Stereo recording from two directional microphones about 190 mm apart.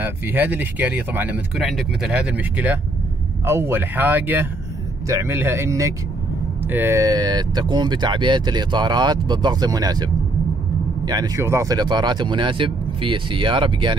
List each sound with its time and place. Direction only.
0.0 s speech: 10° right (ahead or behind)
11.1 s speech: 20° right (ahead or behind)